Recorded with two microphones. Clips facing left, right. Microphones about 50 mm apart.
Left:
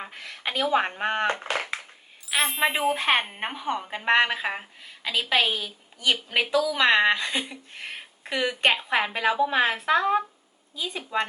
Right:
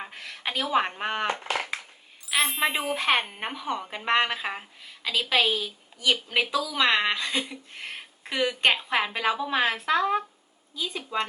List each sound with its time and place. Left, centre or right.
0.0 s speech: centre
1.3 s crushing: left
2.3 s a woman's voice: centre